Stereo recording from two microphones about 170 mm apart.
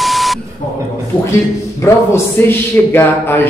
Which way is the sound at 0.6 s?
50° left (ahead or behind).